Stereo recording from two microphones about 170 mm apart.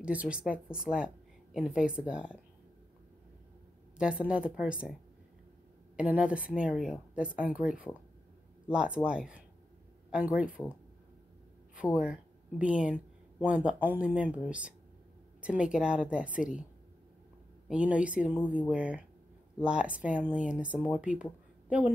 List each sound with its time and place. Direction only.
0.0 s a woman's voice: 5° right (ahead or behind)
4.0 s a woman's voice: 5° right (ahead or behind)
5.9 s a woman's voice: 5° right (ahead or behind)
11.7 s a woman's voice: 5° right (ahead or behind)
17.6 s a woman's voice: 5° right (ahead or behind)